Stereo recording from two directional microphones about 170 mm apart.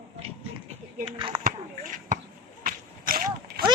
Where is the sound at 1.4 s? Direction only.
50° right (ahead or behind).